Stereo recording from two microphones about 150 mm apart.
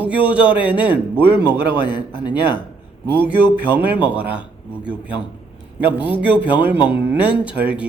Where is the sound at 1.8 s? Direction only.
30° left (ahead or behind).